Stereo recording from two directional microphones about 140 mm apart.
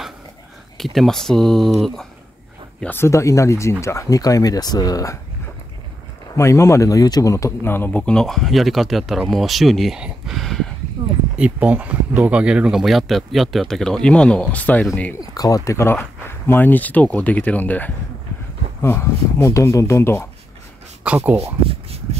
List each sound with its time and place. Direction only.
0.7 s a man's voice: centre (ahead or behind)
2.8 s speech: 15° left (ahead or behind)
6.3 s a man's voice: 20° left (ahead or behind); by 10.7 s centre (ahead or behind)
11.3 s a man's voice: 10° right (ahead or behind); by 14.9 s 10° left (ahead or behind)
15.1 s speech: 25° left (ahead or behind)
21.0 s speech: 10° right (ahead or behind)